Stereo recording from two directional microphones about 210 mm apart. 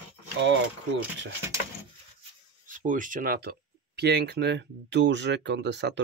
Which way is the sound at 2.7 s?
40° right (ahead or behind).